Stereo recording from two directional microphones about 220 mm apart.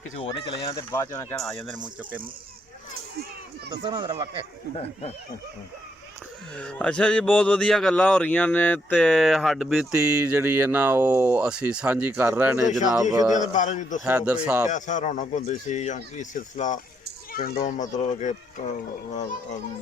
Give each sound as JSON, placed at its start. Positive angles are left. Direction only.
{"t": 0.2, "sound": "speech", "side_deg": 20}
{"t": 3.7, "sound": "speech", "side_deg": -20}
{"t": 6.6, "sound": "speech", "side_deg": 5}
{"t": 13.3, "sound": "speech", "side_deg": 35}
{"t": 14.0, "sound": "speech", "side_deg": -5}
{"t": 14.7, "sound": "speech", "side_deg": 35}